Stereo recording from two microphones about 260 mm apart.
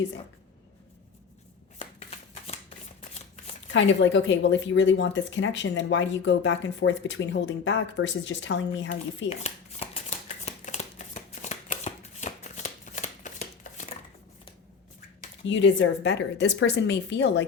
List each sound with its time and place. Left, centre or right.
1.8 s shuffling cards: left
3.7 s a woman's voice: left
9.3 s shuffling cards: left
15.4 s a woman's voice: left